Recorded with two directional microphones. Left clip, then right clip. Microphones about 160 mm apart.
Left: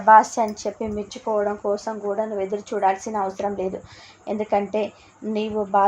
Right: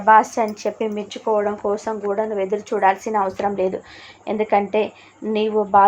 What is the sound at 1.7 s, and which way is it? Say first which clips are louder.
Speech: right 3 dB; 50° right (ahead or behind).